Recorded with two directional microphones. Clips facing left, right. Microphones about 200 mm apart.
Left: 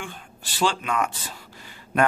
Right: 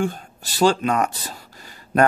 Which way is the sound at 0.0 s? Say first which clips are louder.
Right 13 dB; 40° right (ahead or behind).